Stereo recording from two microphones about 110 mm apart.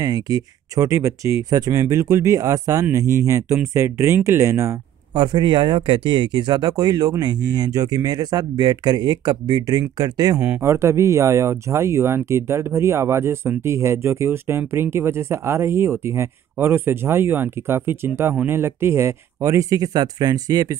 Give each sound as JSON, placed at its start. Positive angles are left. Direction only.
{"t": 0.0, "sound": "speech", "side_deg": -35}
{"t": 5.1, "sound": "speech", "side_deg": -45}
{"t": 10.4, "sound": "speech", "side_deg": -20}